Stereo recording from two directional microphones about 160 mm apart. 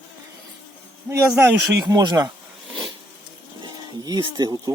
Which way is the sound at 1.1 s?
15° right (ahead or behind).